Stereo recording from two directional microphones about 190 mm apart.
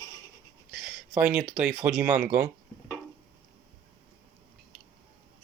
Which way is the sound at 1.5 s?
5° right (ahead or behind).